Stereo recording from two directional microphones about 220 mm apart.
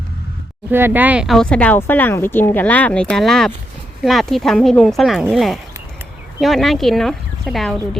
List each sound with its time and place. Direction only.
0.7 s speech: 10° right (ahead or behind)